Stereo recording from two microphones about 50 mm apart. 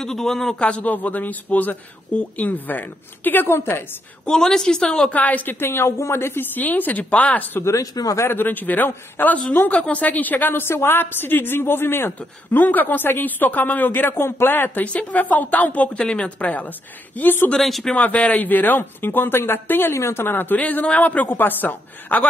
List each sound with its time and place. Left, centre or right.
0.0 s a woman's voice: centre
0.6 s speech: left
3.4 s a woman's voice: left
4.3 s a woman's voice: centre
5.1 s speech: left
5.6 s speech: left
7.6 s speech: left
8.3 s a woman's voice: left
12.4 s speech: left
13.9 s a woman's voice: left
14.9 s speech: left
17.6 s speech: centre
17.9 s speech: left
19.9 s speech: left